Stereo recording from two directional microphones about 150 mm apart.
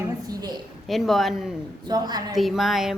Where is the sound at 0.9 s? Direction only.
Centre (ahead or behind).